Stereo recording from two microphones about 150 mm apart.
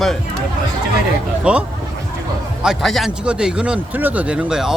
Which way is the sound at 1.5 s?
5° right (ahead or behind).